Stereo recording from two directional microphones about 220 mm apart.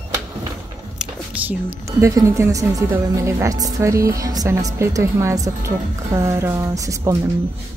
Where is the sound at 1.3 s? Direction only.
5° right (ahead or behind).